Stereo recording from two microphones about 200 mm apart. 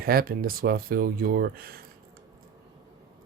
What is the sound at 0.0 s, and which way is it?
Speech, 50° right (ahead or behind).